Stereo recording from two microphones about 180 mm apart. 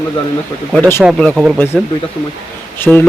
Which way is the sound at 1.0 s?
Centre (ahead or behind).